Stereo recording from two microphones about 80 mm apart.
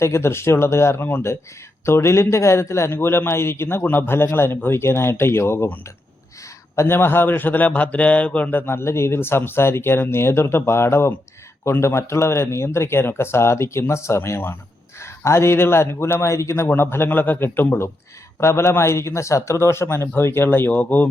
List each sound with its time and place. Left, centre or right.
0.0 s a man's voice: left
6.7 s a man's voice: left